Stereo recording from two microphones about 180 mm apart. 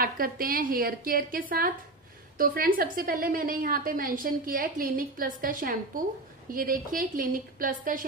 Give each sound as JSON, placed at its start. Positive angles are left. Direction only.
{"t": 0.0, "sound": "a woman's voice", "side_deg": -55}